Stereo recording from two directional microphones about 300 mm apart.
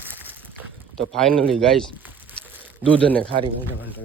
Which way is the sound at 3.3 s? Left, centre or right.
Centre.